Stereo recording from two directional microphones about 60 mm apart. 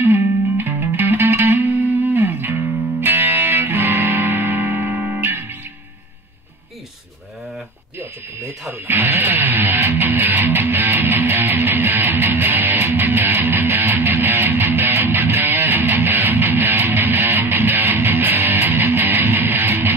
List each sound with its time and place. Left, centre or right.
0.0 s music: right
8.0 s a sound: right
9.2 s music: right